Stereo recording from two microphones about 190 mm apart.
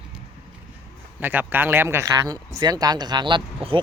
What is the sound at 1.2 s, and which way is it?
Speech, 10° right (ahead or behind).